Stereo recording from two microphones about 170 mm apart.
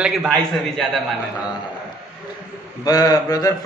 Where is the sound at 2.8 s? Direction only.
20° left (ahead or behind).